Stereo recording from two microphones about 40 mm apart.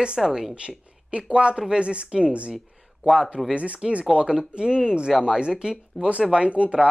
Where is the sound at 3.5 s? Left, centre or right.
Right.